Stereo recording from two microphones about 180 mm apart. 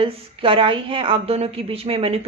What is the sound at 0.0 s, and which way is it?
Speech, 30° right (ahead or behind).